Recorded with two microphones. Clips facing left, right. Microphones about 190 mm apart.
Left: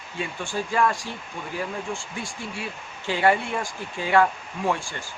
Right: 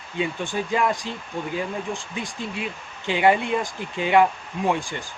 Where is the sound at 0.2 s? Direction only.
20° right (ahead or behind).